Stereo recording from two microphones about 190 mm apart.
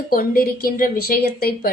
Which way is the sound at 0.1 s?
50° left (ahead or behind).